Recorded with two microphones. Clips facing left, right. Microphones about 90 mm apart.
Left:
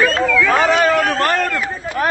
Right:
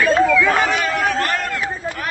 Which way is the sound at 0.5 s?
35° left (ahead or behind).